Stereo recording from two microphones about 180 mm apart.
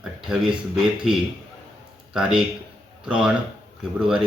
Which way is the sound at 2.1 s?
5° right (ahead or behind).